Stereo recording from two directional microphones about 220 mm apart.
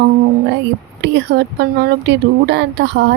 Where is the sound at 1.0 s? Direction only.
50° right (ahead or behind).